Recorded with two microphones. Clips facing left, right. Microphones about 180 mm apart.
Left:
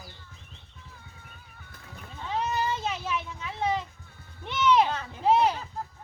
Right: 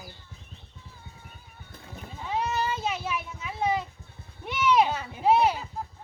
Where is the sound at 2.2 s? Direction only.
10° right (ahead or behind).